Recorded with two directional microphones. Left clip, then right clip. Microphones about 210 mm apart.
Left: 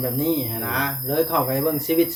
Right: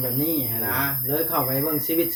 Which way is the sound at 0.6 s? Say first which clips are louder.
Left 2 dB; 30° left (ahead or behind).